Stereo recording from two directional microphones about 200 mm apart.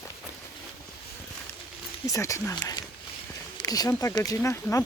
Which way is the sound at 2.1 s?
15° left (ahead or behind).